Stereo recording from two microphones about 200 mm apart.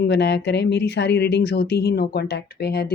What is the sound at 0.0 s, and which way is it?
Speech, 60° left (ahead or behind).